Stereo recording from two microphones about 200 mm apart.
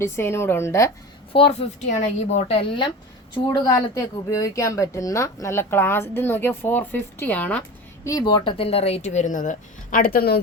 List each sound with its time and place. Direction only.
0.0 s a woman's voice: 15° left (ahead or behind)
1.3 s a woman's voice: 25° left (ahead or behind); by 7.6 s 10° left (ahead or behind)
8.0 s speech: 20° left (ahead or behind); by 10.4 s 50° left (ahead or behind)